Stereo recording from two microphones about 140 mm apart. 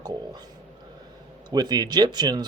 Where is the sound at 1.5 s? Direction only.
30° right (ahead or behind).